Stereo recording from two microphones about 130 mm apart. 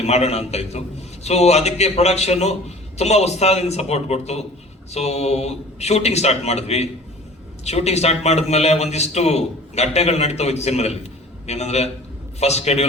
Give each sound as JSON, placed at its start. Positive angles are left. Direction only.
{"t": 0.0, "sound": "a man's voice", "side_deg": 55}